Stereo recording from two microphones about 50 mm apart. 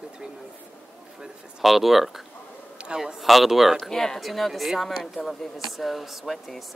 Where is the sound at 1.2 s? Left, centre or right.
Centre.